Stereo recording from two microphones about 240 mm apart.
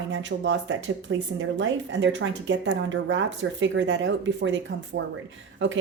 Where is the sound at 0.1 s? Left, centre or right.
Right.